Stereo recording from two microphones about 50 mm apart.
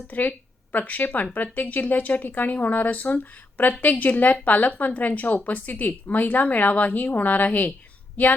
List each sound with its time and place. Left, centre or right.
0.1 s speech: left